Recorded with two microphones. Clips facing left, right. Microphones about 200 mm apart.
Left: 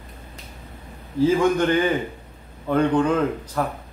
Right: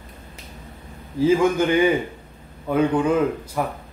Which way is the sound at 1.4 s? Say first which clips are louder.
Right 1 dB; 10° right (ahead or behind).